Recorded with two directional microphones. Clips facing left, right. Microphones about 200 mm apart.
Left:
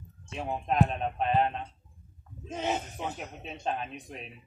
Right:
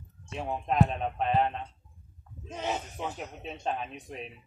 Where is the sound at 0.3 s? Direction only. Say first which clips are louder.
Even; 5° left (ahead or behind).